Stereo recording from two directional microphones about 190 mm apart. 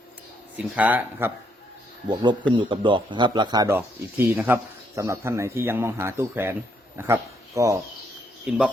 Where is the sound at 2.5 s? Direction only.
25° right (ahead or behind).